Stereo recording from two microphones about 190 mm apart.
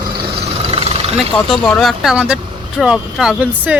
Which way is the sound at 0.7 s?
30° right (ahead or behind).